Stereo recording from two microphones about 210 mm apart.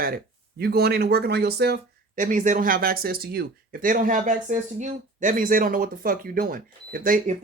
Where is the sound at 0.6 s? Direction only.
50° right (ahead or behind).